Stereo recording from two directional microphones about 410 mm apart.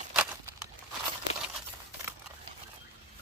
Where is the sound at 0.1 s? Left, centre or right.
Centre.